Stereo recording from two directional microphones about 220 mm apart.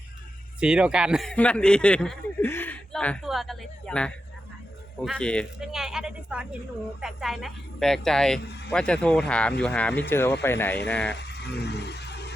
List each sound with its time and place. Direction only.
0.6 s a man's voice: 5° right (ahead or behind)
8.4 s speech: 50° left (ahead or behind)
8.7 s a man's voice: 5° left (ahead or behind)
11.1 s vehicle: 50° left (ahead or behind)